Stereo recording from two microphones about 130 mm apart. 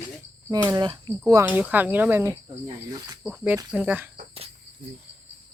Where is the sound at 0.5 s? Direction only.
30° right (ahead or behind).